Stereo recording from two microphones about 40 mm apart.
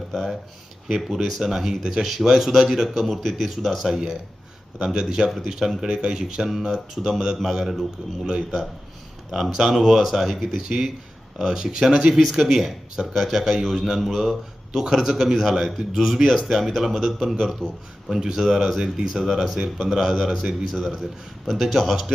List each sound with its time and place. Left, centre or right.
0.1 s speech: centre
8.2 s speech: centre
9.3 s speech: centre
12.1 s speech: centre
18.1 s speech: centre